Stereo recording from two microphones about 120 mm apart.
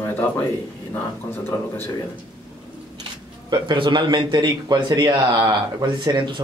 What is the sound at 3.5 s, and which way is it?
Speech, 40° right (ahead or behind).